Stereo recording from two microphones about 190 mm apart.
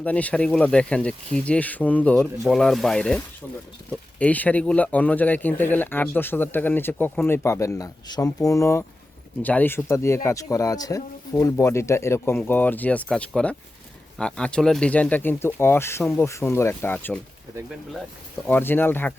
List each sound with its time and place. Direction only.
0.0 s speech: 5° left (ahead or behind)
4.2 s speech: 10° left (ahead or behind)
18.4 s speech: 10° left (ahead or behind)